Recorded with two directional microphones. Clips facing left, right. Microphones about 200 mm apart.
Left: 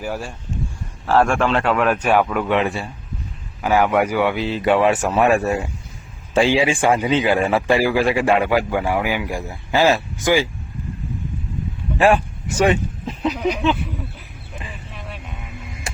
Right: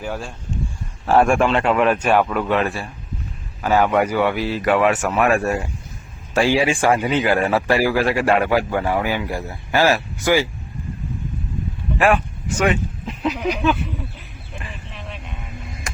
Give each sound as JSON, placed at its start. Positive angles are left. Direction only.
{"t": 0.0, "sound": "a man's voice", "side_deg": 10}
{"t": 1.3, "sound": "speech", "side_deg": -5}
{"t": 2.0, "sound": "a man's voice", "side_deg": 10}
{"t": 6.3, "sound": "a man's voice", "side_deg": 15}
{"t": 11.9, "sound": "a sound", "side_deg": 30}
{"t": 13.3, "sound": "speech", "side_deg": 0}
{"t": 14.6, "sound": "a sound", "side_deg": 10}